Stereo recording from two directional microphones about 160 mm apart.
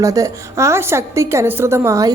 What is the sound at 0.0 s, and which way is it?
A woman's voice, 20° right (ahead or behind).